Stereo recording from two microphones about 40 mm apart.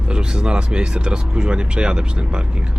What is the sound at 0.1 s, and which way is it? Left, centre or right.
Speech, right.